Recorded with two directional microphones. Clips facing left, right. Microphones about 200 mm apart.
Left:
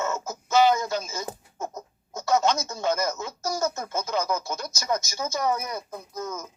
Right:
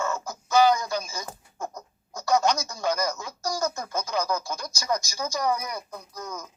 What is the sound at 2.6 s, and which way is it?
Speech, 20° left (ahead or behind).